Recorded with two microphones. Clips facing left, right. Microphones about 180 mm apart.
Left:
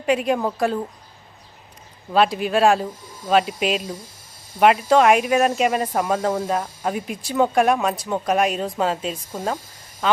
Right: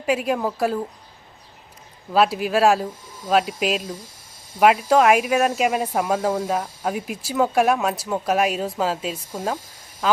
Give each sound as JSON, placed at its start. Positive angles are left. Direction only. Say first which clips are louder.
{"t": 0.0, "sound": "speech", "louder": "left 2 dB", "side_deg": -5}
{"t": 2.1, "sound": "speech", "louder": "even", "side_deg": -5}